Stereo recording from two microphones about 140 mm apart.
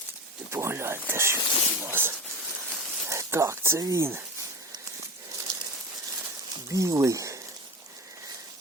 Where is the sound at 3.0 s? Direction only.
20° right (ahead or behind).